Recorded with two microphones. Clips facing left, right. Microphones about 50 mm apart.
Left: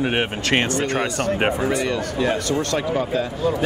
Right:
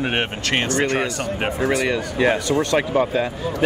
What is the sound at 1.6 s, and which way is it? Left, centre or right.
Speech, right.